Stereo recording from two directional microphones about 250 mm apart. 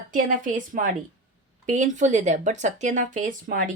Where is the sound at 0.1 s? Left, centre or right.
Right.